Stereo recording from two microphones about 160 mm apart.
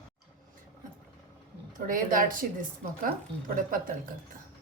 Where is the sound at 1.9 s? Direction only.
55° right (ahead or behind).